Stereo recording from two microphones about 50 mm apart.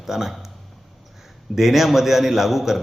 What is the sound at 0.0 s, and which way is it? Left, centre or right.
Speech, centre.